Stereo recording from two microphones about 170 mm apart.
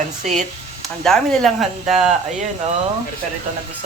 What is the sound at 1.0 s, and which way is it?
Speech, 5° left (ahead or behind).